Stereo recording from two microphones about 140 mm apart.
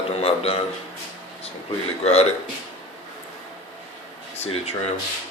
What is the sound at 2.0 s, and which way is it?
Speech, 50° left (ahead or behind).